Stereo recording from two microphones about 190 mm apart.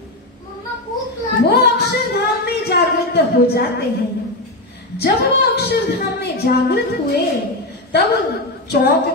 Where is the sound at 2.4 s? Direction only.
60° left (ahead or behind).